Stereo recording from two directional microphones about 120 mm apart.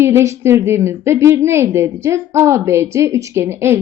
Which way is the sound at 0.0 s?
20° right (ahead or behind).